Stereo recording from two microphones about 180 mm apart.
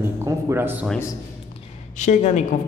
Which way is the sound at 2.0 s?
40° left (ahead or behind).